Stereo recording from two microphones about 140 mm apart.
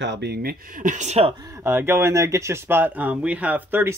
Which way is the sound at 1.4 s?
20° right (ahead or behind).